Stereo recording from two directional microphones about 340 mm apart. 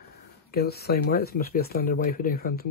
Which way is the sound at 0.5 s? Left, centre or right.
Left.